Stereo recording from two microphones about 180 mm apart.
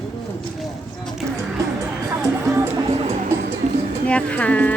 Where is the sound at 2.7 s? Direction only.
35° right (ahead or behind).